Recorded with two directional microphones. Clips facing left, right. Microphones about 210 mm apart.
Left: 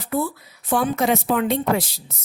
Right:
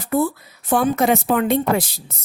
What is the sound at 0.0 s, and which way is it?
A woman's voice, 45° right (ahead or behind).